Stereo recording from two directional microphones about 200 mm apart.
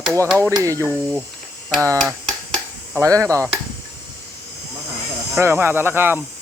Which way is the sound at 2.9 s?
15° right (ahead or behind).